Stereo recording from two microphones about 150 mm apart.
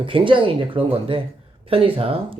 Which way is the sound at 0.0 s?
35° right (ahead or behind).